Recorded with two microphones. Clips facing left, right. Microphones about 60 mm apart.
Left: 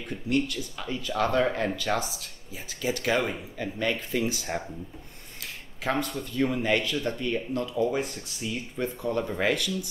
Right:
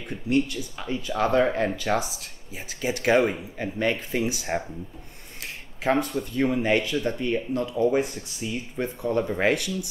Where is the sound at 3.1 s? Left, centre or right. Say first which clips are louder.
Right 6 dB; right.